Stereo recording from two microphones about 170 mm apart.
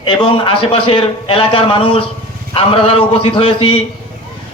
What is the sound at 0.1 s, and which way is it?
A man's voice, 30° left (ahead or behind).